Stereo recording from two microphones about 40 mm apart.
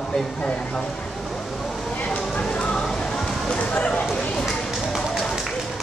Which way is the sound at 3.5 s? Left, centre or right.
Left.